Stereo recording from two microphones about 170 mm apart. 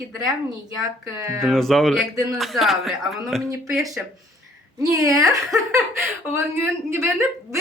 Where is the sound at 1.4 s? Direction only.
Centre (ahead or behind).